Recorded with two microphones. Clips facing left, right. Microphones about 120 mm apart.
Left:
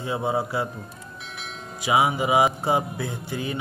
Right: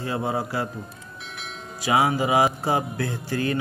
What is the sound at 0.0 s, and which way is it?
Speech, 20° left (ahead or behind).